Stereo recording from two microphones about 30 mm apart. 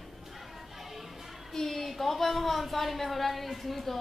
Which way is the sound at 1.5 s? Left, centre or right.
Centre.